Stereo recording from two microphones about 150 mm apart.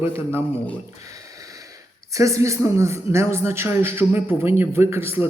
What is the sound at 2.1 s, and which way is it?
A man's voice, 20° right (ahead or behind).